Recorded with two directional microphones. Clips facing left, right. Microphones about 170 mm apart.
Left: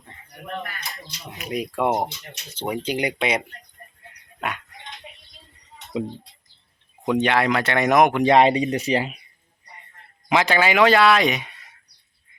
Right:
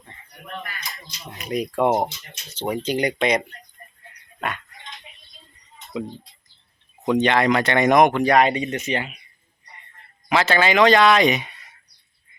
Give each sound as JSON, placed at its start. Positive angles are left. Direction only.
{"t": 0.4, "sound": "speech", "side_deg": 60}
{"t": 1.3, "sound": "speech", "side_deg": 5}
{"t": 4.4, "sound": "a sound", "side_deg": 10}
{"t": 7.0, "sound": "speech", "side_deg": 10}
{"t": 8.2, "sound": "speech", "side_deg": 25}
{"t": 10.2, "sound": "speech", "side_deg": 15}